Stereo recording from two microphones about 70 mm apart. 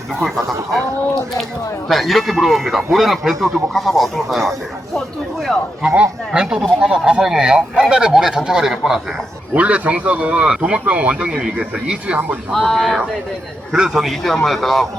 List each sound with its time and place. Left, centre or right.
1.9 s speech: centre
5.9 s speech: centre
9.6 s speech: centre
12.5 s speech: centre
13.7 s speech: centre